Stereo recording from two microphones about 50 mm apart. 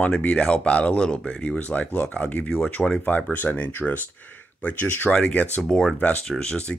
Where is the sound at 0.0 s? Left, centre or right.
Left.